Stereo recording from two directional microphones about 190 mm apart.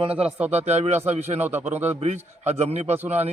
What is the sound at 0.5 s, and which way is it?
A man's voice, 35° right (ahead or behind).